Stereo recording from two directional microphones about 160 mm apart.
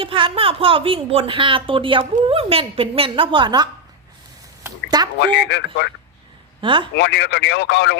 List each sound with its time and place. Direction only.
0.0 s a woman's voice: 35° right (ahead or behind)
4.6 s a sound: 25° right (ahead or behind)
5.2 s speech: 90° left
6.6 s a man's voice: 30° right (ahead or behind)
6.9 s speech: 90° left